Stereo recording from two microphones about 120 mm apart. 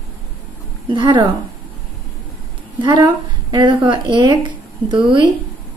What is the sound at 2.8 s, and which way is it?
A woman's voice, 35° right (ahead or behind).